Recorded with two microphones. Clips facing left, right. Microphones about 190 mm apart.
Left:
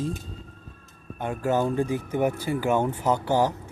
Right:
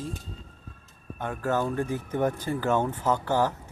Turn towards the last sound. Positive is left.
turn(degrees=15)  # may be behind; listen again after turning